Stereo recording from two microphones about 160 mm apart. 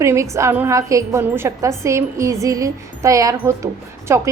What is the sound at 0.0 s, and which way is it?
A woman's voice, 20° right (ahead or behind).